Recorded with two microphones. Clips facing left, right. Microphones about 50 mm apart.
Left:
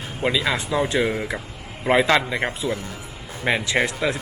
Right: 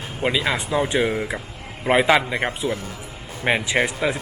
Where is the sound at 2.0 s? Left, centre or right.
Centre.